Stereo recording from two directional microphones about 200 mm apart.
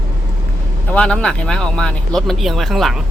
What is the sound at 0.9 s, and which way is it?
Speech, 5° left (ahead or behind).